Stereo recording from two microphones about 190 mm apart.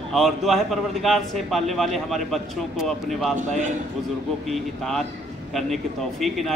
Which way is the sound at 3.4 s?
40° right (ahead or behind).